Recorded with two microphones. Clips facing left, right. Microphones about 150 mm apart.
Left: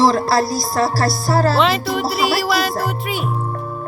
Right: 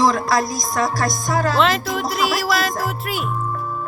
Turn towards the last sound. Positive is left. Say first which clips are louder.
# left 2 dB
turn(degrees=0)  # may be behind; listen again after turning